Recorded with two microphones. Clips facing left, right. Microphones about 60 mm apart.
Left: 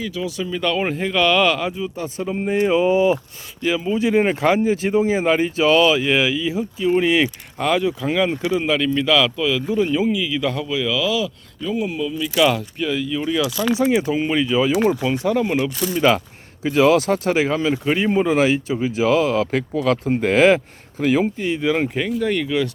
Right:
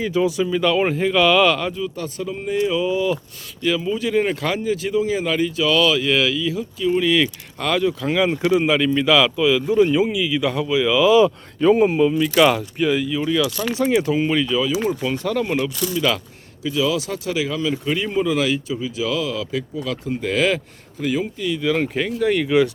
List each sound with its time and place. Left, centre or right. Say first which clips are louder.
0.0 s speech: right 6 dB; right
0.4 s speech: right 3 dB; centre
1.7 s speech: even; left
3.6 s speech: left 1 dB; centre
7.7 s speech: even; centre
11.0 s speech: right 8 dB; right
12.4 s speech: right 1 dB; centre
15.7 s speech: left 4 dB; left
16.6 s speech: left 6 dB; left
21.0 s speech: left 5 dB; left
21.4 s speech: left 1 dB; left
21.8 s speech: right 1 dB; centre
22.4 s speech: right 4 dB; centre